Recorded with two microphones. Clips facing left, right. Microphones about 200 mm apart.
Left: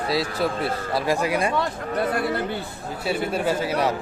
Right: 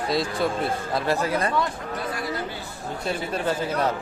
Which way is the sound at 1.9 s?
60° left (ahead or behind).